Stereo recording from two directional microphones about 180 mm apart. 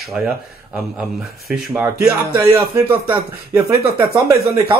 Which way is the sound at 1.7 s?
10° right (ahead or behind).